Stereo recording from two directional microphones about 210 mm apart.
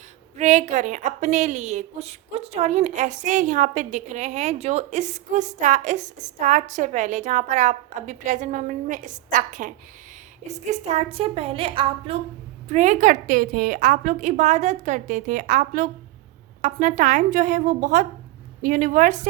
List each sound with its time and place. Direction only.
0.3 s a woman's voice: 35° right (ahead or behind)